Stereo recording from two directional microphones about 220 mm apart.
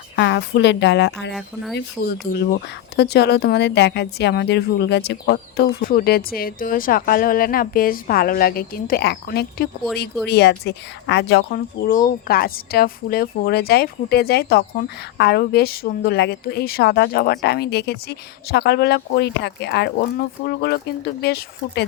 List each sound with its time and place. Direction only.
0.2 s speech: 50° left (ahead or behind)
1.3 s speech: centre (ahead or behind)
1.7 s speech: 50° left (ahead or behind)